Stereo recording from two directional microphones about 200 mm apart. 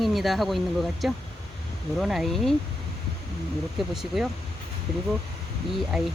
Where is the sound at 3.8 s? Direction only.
Centre (ahead or behind).